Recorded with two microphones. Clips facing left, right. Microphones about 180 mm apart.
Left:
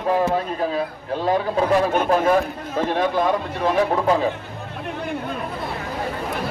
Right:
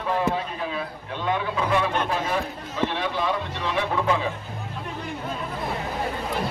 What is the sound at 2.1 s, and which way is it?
A man's voice, 50° left (ahead or behind).